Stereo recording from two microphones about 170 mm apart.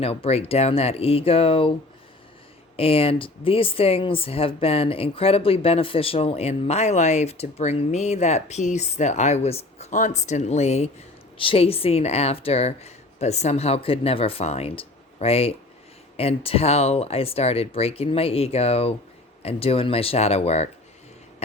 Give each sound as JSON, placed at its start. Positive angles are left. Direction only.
{"t": 0.0, "sound": "speech", "side_deg": 35}
{"t": 2.7, "sound": "speech", "side_deg": 35}